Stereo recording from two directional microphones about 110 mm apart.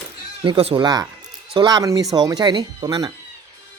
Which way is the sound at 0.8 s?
35° right (ahead or behind).